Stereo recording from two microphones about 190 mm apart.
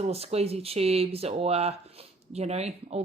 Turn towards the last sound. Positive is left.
turn(degrees=-35)  # may be behind; listen again after turning